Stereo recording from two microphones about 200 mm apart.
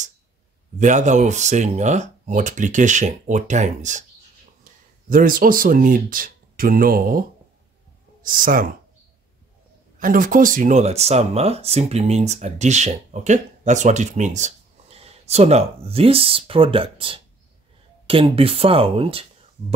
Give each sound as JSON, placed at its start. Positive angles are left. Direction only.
{"t": 0.7, "sound": "speech", "side_deg": -35}
{"t": 5.1, "sound": "speech", "side_deg": -45}
{"t": 9.9, "sound": "speech", "side_deg": -40}